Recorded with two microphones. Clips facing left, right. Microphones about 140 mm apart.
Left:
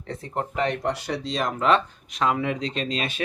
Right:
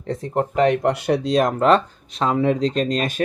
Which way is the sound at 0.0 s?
40° right (ahead or behind).